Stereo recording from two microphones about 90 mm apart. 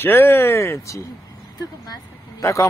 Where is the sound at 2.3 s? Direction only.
35° left (ahead or behind).